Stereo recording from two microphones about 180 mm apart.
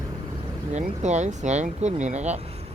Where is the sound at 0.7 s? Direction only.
40° right (ahead or behind).